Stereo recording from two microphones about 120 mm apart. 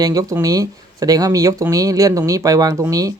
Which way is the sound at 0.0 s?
30° right (ahead or behind).